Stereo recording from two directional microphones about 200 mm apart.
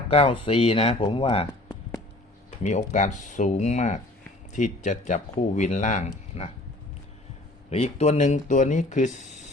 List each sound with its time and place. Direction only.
0.1 s speech: 30° left (ahead or behind)
2.6 s speech: 35° left (ahead or behind)
7.7 s speech: 30° left (ahead or behind)